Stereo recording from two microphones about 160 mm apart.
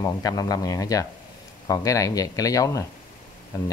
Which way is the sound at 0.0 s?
25° left (ahead or behind).